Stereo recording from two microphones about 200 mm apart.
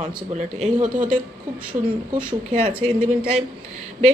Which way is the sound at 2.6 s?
25° right (ahead or behind).